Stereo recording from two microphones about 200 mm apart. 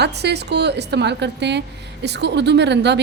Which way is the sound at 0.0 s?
55° right (ahead or behind).